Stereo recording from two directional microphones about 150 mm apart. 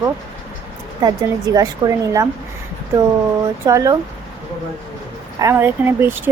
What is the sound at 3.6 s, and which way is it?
Speech, 20° right (ahead or behind).